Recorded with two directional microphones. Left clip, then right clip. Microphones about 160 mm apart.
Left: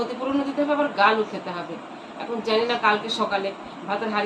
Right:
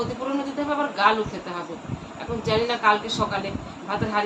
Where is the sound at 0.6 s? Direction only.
10° right (ahead or behind).